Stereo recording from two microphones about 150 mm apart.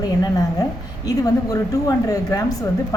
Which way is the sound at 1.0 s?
25° left (ahead or behind).